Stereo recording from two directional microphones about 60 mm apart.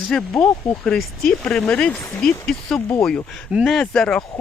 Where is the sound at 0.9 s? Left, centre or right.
Centre.